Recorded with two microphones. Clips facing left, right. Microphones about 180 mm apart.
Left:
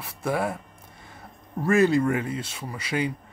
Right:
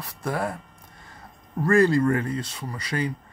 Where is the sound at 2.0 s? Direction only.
10° left (ahead or behind).